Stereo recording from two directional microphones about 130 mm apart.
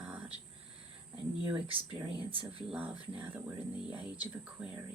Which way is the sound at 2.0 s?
40° right (ahead or behind).